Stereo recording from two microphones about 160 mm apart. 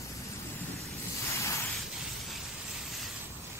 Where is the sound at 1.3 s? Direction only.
20° left (ahead or behind).